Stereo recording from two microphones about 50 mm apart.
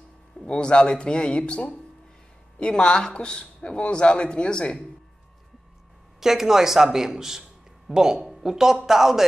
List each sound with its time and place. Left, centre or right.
0.5 s speech: centre
6.2 s speech: centre